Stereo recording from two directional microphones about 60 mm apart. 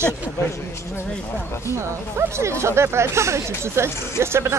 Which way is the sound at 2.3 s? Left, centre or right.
Right.